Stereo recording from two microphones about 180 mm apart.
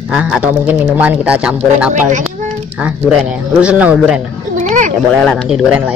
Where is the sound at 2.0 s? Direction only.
45° right (ahead or behind).